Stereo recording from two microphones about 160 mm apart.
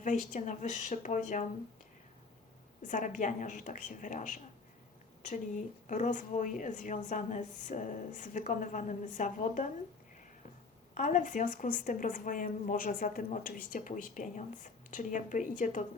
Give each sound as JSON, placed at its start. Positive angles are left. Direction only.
{"t": 0.0, "sound": "a woman's voice", "side_deg": 50}
{"t": 2.8, "sound": "a woman's voice", "side_deg": 50}
{"t": 10.9, "sound": "speech", "side_deg": 50}